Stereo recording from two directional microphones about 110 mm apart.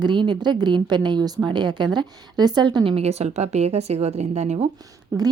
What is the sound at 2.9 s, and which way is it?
A woman's voice, 75° right (ahead or behind).